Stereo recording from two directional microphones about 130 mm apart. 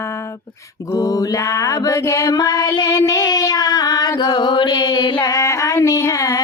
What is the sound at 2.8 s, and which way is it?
Child singing, 25° left (ahead or behind).